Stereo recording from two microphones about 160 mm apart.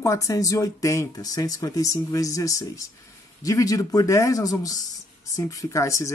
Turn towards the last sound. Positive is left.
turn(degrees=20)  # may be behind; listen again after turning